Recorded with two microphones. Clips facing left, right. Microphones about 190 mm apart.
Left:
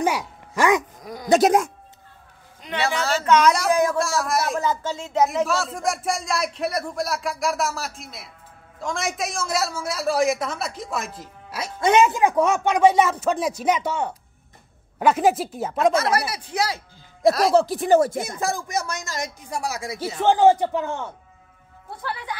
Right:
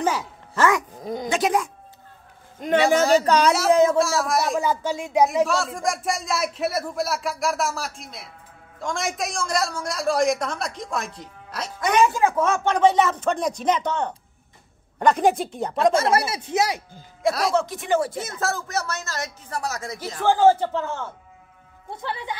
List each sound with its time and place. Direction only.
0.0 s a sound: 15° left (ahead or behind)
1.0 s speech: 25° right (ahead or behind)
1.3 s speech: 45° left (ahead or behind)
2.6 s speech: 45° right (ahead or behind)
3.3 s speech: 35° right (ahead or behind)
3.7 s speech: 25° right (ahead or behind)
4.0 s speech: centre (ahead or behind)
4.6 s speech: 10° right (ahead or behind)
5.3 s speech: centre (ahead or behind)
11.8 s speech: 25° left (ahead or behind); by 15.9 s 5° left (ahead or behind)
15.9 s speech: 30° right (ahead or behind)
17.3 s speech: centre (ahead or behind)
17.6 s speech: 35° left (ahead or behind)
18.2 s speech: 15° left (ahead or behind)